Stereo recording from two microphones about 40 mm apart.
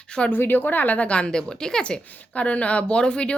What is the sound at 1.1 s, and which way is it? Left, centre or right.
Speech, left.